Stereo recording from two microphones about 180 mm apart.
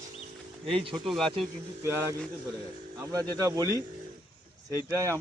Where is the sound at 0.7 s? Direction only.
30° right (ahead or behind).